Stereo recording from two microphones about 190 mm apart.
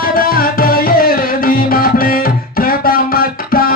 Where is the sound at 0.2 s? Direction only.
50° left (ahead or behind).